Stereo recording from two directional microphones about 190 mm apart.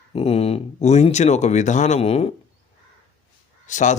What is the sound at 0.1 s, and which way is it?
Speech, 30° left (ahead or behind).